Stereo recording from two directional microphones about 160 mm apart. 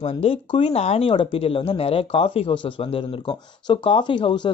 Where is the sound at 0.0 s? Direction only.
40° left (ahead or behind).